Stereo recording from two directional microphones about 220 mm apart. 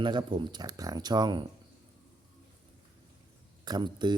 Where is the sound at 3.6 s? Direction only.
20° right (ahead or behind).